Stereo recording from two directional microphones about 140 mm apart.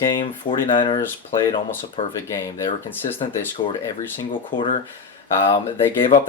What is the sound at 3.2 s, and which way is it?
Speech, 40° left (ahead or behind).